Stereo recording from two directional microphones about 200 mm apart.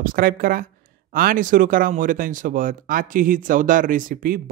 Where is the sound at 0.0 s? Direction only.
45° right (ahead or behind).